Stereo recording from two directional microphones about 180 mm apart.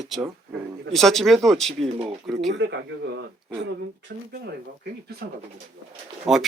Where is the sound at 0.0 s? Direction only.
Centre (ahead or behind).